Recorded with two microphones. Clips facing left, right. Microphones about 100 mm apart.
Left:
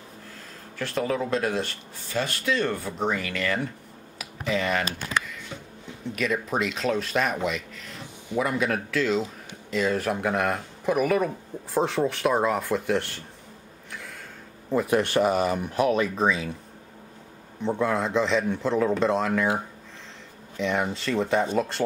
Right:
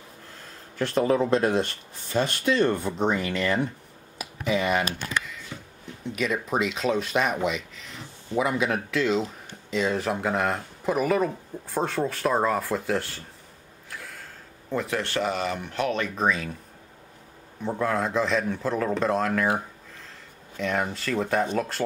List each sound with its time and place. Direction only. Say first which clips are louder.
0.7 s speech: right 4 dB; 30° right (ahead or behind)
4.2 s computer keyboard: right 1 dB; 15° right (ahead or behind)
6.0 s speech: even; centre (ahead or behind)
13.8 s a sound: even; centre (ahead or behind)
14.9 s speech: left 7 dB; 15° left (ahead or behind)
17.6 s speech: left 1 dB; centre (ahead or behind)
20.5 s speech: left 1 dB; centre (ahead or behind)